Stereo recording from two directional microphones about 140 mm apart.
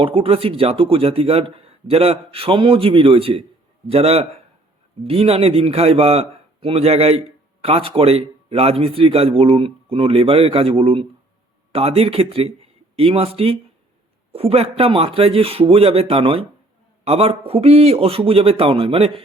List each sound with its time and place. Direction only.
0.0 s a man's voice: 40° right (ahead or behind)